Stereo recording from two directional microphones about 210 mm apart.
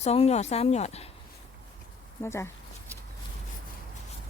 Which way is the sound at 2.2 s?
10° left (ahead or behind).